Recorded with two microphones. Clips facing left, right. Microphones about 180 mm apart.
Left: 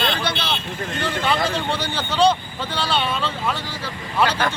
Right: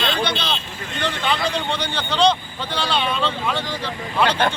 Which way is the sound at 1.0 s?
5° left (ahead or behind).